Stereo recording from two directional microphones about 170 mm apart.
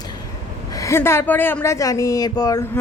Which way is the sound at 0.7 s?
15° left (ahead or behind).